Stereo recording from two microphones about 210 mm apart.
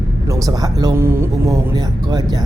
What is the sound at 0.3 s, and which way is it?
Speech, 15° right (ahead or behind).